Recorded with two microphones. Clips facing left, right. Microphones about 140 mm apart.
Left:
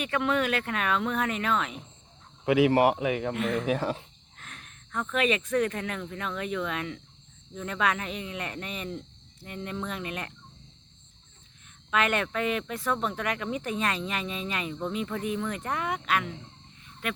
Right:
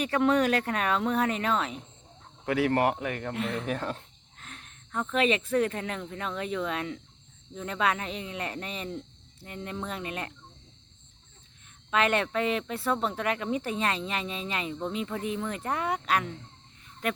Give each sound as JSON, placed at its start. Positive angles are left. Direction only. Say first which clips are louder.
{"t": 0.0, "sound": "speech", "louder": "right 3 dB", "side_deg": -35}
{"t": 2.5, "sound": "speech", "louder": "left 4 dB", "side_deg": 10}
{"t": 4.4, "sound": "speech", "louder": "even", "side_deg": -30}
{"t": 11.9, "sound": "speech", "louder": "right 1 dB", "side_deg": -30}